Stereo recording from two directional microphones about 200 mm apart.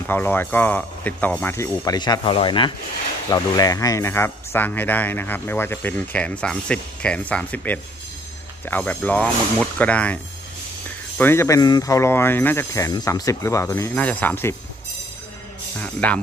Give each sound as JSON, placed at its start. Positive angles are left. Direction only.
{"t": 0.1, "sound": "speech", "side_deg": 10}
{"t": 11.1, "sound": "speech", "side_deg": 10}
{"t": 15.8, "sound": "speech", "side_deg": 5}